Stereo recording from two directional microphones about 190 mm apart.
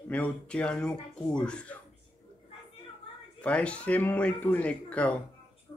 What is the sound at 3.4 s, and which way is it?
Speech, 5° left (ahead or behind).